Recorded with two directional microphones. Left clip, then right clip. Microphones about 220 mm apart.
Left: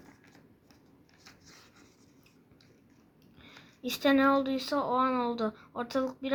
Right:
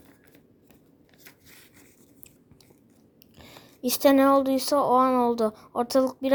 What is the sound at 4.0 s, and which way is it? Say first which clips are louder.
Speech: right 6 dB; 45° right (ahead or behind).